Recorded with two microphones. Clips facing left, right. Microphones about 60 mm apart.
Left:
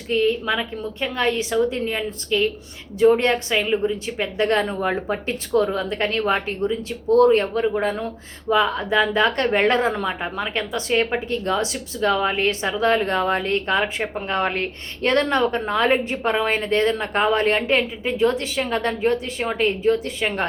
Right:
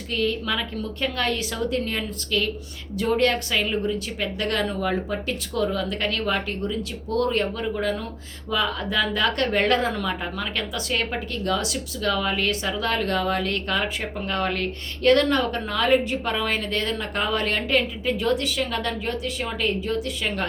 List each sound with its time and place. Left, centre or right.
0.1 s a woman's voice: left